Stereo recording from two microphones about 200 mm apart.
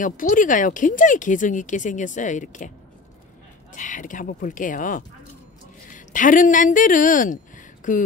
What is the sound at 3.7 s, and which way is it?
A woman's voice, 40° left (ahead or behind).